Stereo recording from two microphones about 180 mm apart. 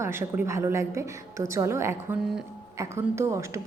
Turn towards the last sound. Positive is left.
turn(degrees=-15)  # may be behind; listen again after turning